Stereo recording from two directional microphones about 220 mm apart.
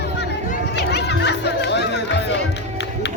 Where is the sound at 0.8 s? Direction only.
50° left (ahead or behind).